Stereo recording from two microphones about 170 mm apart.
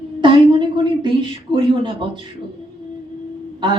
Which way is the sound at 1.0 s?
30° right (ahead or behind).